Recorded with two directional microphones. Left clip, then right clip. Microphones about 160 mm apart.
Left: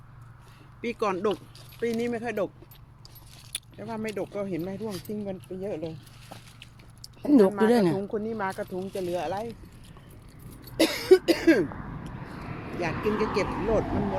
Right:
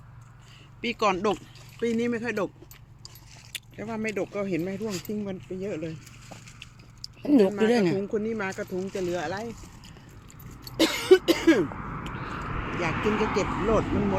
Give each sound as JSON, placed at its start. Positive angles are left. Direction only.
{"t": 0.8, "sound": "speech", "side_deg": -45}
{"t": 1.8, "sound": "speech", "side_deg": -70}
{"t": 3.8, "sound": "speech", "side_deg": -65}
{"t": 7.2, "sound": "speech", "side_deg": 10}
{"t": 8.1, "sound": "speech", "side_deg": -85}
{"t": 8.9, "sound": "speech", "side_deg": -60}
{"t": 10.8, "sound": "cough", "side_deg": -35}
{"t": 11.7, "sound": "a sound", "side_deg": 5}
{"t": 12.1, "sound": "vehicle", "side_deg": 25}
{"t": 13.1, "sound": "speech", "side_deg": 10}
{"t": 13.4, "sound": "speech", "side_deg": -10}